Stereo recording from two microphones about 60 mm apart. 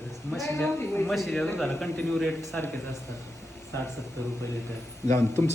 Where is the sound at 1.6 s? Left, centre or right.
Centre.